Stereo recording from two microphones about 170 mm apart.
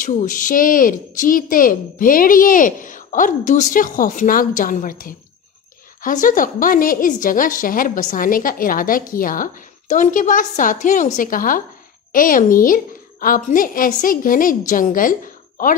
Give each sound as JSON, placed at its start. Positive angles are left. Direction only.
{"t": 0.0, "sound": "a woman's voice", "side_deg": 50}